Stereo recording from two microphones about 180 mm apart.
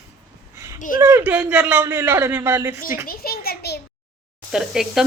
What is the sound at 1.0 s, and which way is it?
A man's voice, 10° right (ahead or behind).